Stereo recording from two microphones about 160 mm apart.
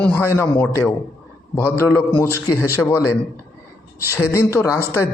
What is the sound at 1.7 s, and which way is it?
A man's voice, 15° left (ahead or behind).